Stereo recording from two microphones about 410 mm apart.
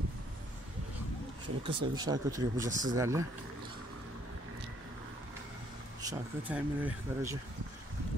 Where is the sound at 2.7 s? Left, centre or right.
Centre.